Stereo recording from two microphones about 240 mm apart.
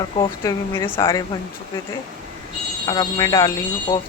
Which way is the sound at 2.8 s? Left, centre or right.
Centre.